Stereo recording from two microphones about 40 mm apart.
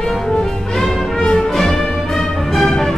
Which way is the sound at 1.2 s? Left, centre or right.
Centre.